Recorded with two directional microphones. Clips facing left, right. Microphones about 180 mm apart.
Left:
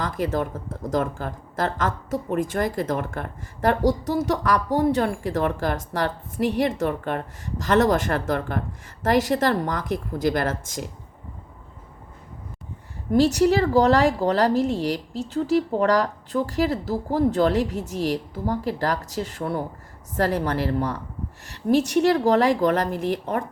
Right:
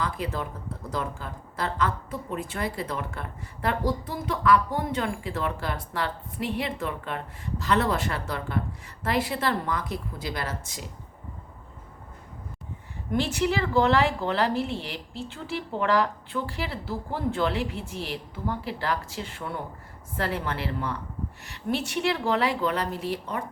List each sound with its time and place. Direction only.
0.0 s speech: 45° left (ahead or behind)
13.1 s speech: 40° left (ahead or behind)